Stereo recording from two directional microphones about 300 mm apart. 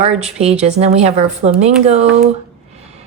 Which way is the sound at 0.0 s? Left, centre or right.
Right.